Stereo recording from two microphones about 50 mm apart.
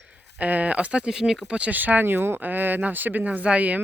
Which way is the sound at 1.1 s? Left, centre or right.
Centre.